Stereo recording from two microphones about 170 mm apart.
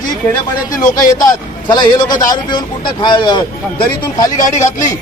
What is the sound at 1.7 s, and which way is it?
A man's voice, 25° left (ahead or behind).